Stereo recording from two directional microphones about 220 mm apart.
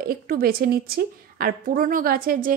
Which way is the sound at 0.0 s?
40° right (ahead or behind).